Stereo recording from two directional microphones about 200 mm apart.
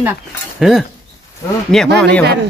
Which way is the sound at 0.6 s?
Centre (ahead or behind).